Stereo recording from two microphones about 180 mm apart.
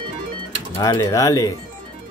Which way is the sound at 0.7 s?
15° left (ahead or behind).